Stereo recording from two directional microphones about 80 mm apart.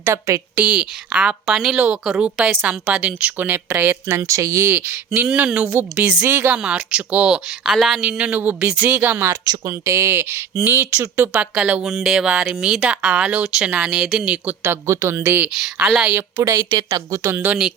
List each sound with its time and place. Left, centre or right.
0.5 s speech: centre
1.7 s speech: centre
4.3 s speech: right
6.0 s speech: centre
6.2 s speech: right
6.6 s speech: centre
8.0 s speech: centre
9.6 s speech: right; by 14.3 s centre
14.4 s speech: right
15.5 s speech: centre
16.1 s speech: right
16.6 s speech: right
17.3 s speech: right